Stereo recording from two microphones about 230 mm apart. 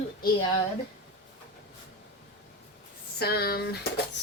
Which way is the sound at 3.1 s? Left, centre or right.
Left.